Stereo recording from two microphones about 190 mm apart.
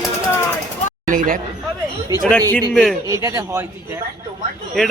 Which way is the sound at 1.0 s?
45° right (ahead or behind).